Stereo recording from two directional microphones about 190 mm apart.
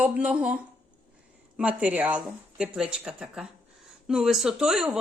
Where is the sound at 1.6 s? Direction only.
5° right (ahead or behind).